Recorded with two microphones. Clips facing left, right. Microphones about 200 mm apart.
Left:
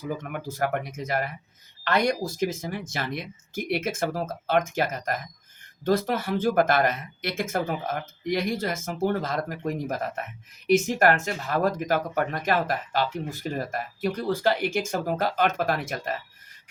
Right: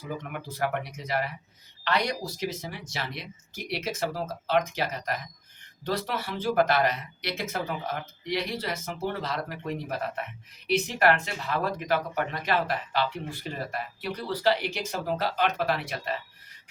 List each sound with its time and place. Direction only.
0.2 s speech: 45° left (ahead or behind)